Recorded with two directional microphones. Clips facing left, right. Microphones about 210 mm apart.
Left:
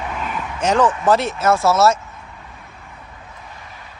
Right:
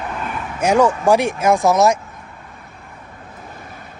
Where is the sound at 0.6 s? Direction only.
10° right (ahead or behind).